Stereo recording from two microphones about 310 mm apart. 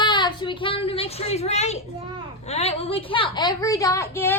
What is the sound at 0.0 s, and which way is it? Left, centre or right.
A woman's voice, centre.